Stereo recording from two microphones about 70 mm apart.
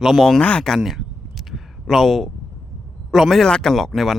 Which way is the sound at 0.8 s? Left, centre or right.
Centre.